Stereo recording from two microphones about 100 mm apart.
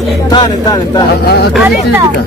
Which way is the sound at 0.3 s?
45° left (ahead or behind).